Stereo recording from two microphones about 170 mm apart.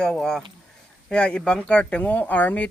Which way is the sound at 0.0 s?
5° left (ahead or behind).